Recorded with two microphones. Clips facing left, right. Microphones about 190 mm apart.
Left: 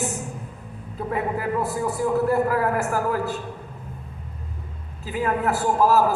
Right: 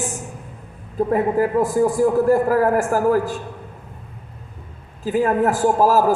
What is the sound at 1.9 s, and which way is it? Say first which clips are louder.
A man's voice: right 2 dB; 45° right (ahead or behind).